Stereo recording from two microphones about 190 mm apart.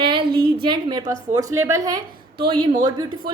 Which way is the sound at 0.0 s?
25° right (ahead or behind).